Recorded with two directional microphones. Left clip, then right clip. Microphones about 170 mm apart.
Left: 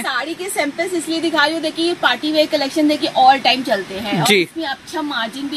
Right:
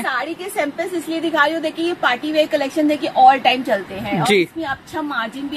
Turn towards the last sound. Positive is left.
turn(degrees=-10)  # may be behind; listen again after turning